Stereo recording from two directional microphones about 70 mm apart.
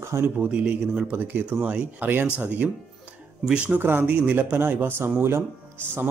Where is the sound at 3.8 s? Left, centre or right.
Right.